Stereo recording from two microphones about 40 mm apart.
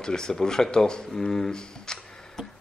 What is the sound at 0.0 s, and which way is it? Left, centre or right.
A man's voice, centre.